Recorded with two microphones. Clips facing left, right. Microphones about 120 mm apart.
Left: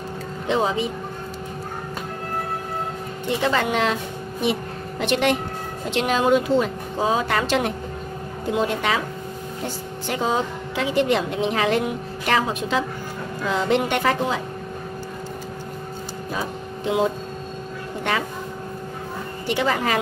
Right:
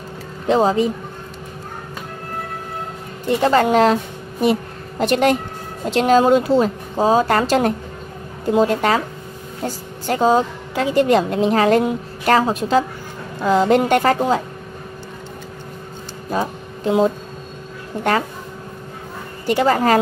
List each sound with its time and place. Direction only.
0.5 s a woman's voice: 40° right (ahead or behind)
3.3 s a woman's voice: 40° right (ahead or behind)
10.0 s a woman's voice: 40° right (ahead or behind)
16.3 s music: 40° right (ahead or behind)
19.4 s a woman's voice: 40° right (ahead or behind)